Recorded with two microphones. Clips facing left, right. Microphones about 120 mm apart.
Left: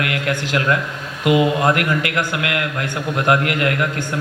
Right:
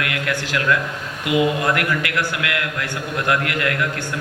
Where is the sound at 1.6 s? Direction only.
30° left (ahead or behind).